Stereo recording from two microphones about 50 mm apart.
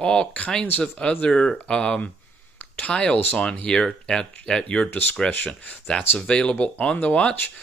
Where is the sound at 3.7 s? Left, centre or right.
Centre.